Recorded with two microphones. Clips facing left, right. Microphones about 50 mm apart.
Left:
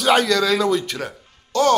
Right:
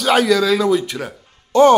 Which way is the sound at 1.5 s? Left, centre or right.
Right.